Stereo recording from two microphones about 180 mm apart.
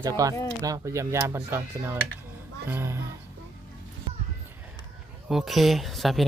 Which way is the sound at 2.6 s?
15° right (ahead or behind).